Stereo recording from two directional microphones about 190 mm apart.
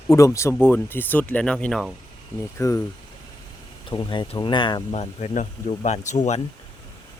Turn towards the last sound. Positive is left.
turn(degrees=40)  # may be behind; listen again after turning